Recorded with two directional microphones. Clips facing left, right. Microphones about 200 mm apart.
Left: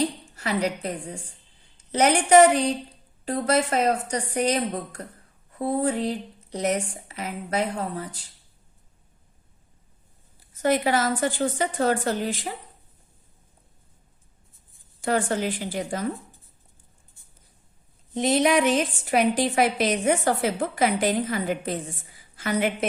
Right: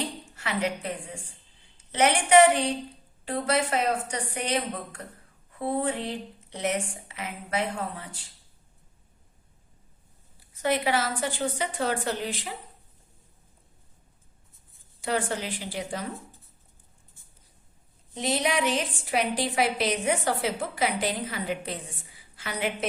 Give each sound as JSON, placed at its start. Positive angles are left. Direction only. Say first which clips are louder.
{"t": 0.3, "sound": "speech", "louder": "left 3 dB", "side_deg": 40}
{"t": 10.6, "sound": "a woman's voice", "louder": "left 4 dB", "side_deg": 45}
{"t": 15.0, "sound": "a woman's voice", "louder": "left 5 dB", "side_deg": 45}
{"t": 18.1, "sound": "a woman's voice", "louder": "left 7 dB", "side_deg": 50}